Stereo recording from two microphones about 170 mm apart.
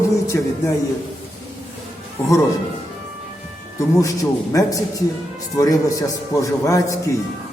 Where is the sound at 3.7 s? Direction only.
20° left (ahead or behind).